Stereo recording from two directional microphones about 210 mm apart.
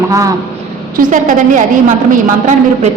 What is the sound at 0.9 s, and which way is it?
Speech, 40° right (ahead or behind).